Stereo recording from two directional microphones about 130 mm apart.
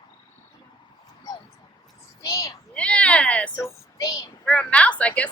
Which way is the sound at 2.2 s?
25° left (ahead or behind).